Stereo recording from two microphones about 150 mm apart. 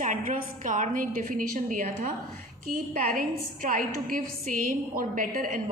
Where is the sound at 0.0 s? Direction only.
60° right (ahead or behind).